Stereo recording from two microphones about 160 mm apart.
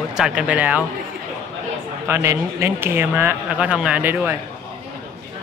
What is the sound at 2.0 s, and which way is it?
Speech, 15° right (ahead or behind).